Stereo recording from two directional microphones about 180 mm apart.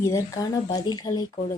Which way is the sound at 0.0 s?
20° left (ahead or behind).